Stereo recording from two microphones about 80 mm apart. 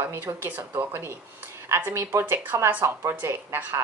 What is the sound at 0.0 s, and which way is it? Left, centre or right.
A woman's voice, right.